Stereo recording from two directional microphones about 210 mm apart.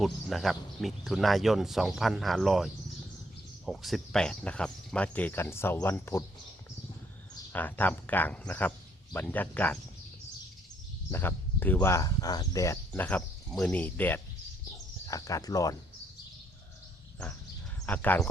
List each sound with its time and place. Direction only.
0.0 s speech: centre (ahead or behind)
3.7 s speech: centre (ahead or behind)
7.5 s speech: 10° left (ahead or behind)
11.1 s speech: 10° left (ahead or behind)
17.8 s speech: 5° left (ahead or behind)